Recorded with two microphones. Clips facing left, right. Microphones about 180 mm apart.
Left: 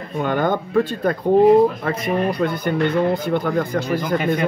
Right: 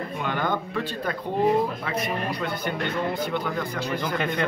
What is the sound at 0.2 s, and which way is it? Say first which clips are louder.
Speech: left 8 dB; 45° left (ahead or behind).